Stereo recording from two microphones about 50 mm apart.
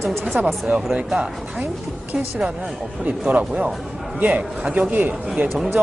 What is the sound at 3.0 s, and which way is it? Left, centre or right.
Speech, right.